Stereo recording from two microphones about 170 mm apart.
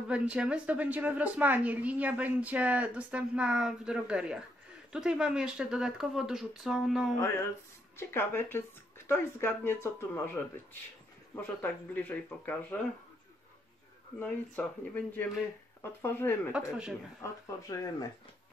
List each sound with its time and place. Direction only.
0.1 s a woman's voice: 5° right (ahead or behind)
8.0 s speech: 15° left (ahead or behind)
14.2 s speech: 10° left (ahead or behind)
16.5 s speech: 5° right (ahead or behind)
17.2 s speech: 20° left (ahead or behind)